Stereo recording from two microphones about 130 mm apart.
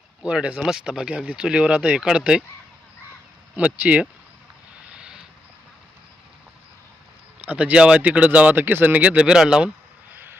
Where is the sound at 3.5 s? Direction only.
10° right (ahead or behind).